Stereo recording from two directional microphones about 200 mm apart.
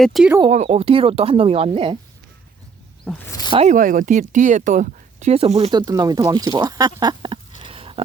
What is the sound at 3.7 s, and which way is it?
Speech, 40° right (ahead or behind).